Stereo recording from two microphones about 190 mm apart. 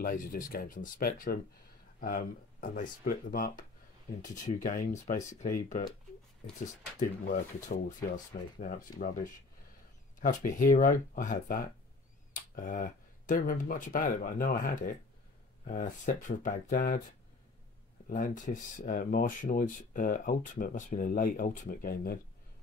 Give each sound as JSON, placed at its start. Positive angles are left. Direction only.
{"t": 0.0, "sound": "speech", "side_deg": 45}
{"t": 10.2, "sound": "speech", "side_deg": 45}
{"t": 18.0, "sound": "speech", "side_deg": 45}